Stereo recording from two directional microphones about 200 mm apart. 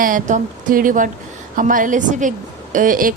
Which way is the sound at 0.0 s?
40° right (ahead or behind).